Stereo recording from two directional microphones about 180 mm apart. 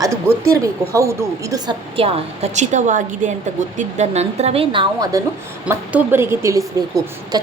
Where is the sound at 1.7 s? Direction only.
30° right (ahead or behind).